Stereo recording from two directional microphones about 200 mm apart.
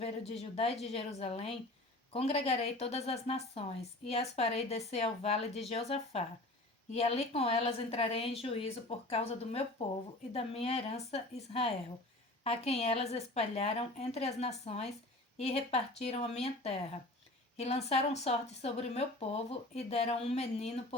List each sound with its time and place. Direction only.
0.0 s a woman's voice: 30° left (ahead or behind)